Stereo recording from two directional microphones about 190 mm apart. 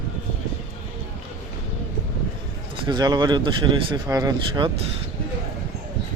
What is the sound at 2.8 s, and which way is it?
Speech, 20° right (ahead or behind).